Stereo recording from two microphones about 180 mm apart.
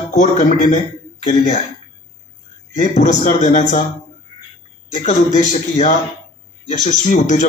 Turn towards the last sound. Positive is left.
turn(degrees=45)  # may be behind; listen again after turning